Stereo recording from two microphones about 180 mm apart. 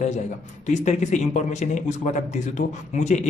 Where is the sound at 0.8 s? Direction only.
40° left (ahead or behind).